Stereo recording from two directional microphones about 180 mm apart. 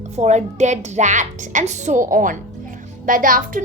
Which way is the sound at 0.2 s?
40° right (ahead or behind).